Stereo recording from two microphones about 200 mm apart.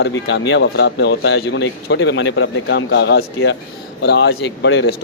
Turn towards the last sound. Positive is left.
turn(degrees=65)  # may be behind; listen again after turning